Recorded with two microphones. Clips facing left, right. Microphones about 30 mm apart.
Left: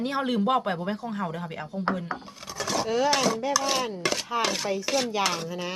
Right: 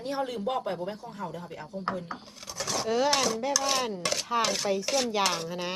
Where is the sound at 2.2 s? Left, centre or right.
Centre.